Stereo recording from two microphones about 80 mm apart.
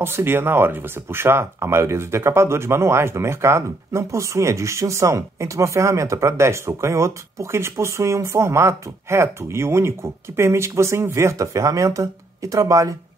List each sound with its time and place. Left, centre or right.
0.0 s speech: right